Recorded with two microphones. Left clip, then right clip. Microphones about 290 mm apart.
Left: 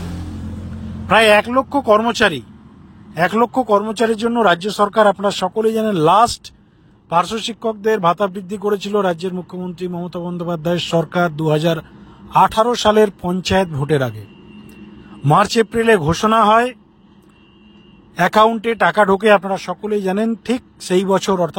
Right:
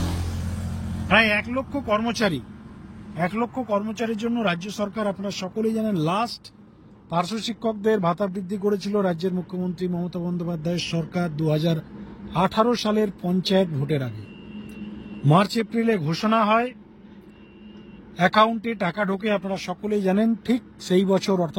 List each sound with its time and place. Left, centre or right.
1.0 s a man's voice: centre
15.2 s a man's voice: centre
18.1 s a man's voice: centre